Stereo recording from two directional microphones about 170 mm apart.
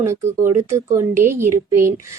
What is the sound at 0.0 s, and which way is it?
A woman's voice, 15° right (ahead or behind).